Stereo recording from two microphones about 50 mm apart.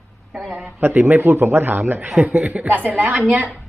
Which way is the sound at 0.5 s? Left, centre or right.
Right.